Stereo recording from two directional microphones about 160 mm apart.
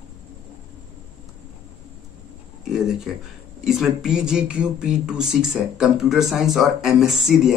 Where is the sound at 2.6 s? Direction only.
5° right (ahead or behind).